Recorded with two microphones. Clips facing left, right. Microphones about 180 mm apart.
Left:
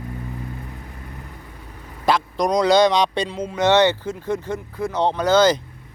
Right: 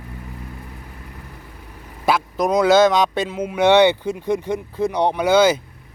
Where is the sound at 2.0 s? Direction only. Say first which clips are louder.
Even; 5° right (ahead or behind).